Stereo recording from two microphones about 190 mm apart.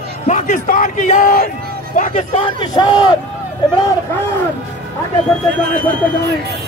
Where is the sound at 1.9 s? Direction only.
40° left (ahead or behind).